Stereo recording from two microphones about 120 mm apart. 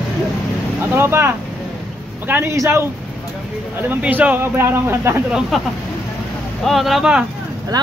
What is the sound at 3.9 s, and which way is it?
Speech, 15° right (ahead or behind).